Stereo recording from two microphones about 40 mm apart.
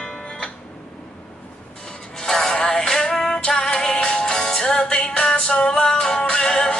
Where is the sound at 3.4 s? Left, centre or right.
Left.